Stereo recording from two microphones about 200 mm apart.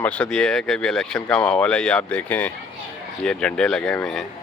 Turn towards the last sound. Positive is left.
turn(degrees=0)  # may be behind; listen again after turning